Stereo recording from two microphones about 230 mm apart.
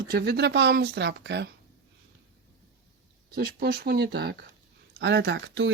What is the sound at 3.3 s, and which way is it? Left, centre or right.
Speech, right.